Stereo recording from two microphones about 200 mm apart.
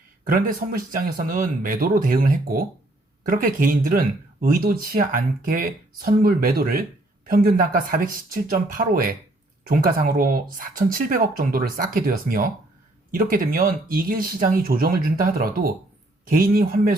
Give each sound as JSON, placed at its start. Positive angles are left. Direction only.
{"t": 0.3, "sound": "speech", "side_deg": -45}